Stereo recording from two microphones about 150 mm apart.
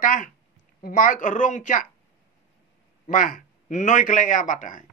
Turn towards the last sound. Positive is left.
turn(degrees=60)  # may be behind; listen again after turning